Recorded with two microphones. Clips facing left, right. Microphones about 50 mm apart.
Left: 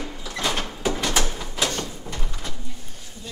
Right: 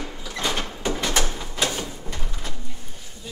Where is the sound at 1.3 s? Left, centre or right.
Centre.